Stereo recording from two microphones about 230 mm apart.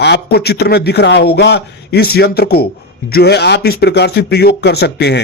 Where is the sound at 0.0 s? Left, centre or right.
Left.